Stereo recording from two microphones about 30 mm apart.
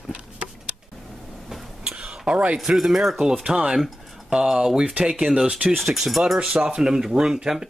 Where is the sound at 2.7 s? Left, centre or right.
Centre.